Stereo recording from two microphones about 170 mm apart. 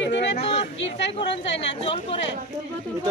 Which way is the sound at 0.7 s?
90° left.